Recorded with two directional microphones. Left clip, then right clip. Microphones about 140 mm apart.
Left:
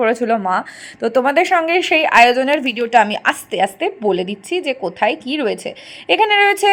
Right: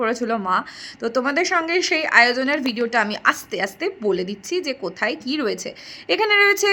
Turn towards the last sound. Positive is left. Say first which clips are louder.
# left 4 dB
turn(degrees=15)  # may be behind; listen again after turning